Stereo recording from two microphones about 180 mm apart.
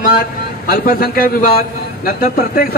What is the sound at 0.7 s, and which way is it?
A woman's voice, 55° left (ahead or behind).